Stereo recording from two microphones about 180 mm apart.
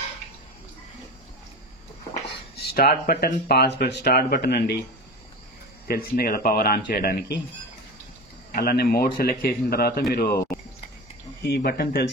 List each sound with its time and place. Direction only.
2.2 s speech: 65° left (ahead or behind)
5.9 s speech: 55° left (ahead or behind)
8.5 s speech: 55° left (ahead or behind)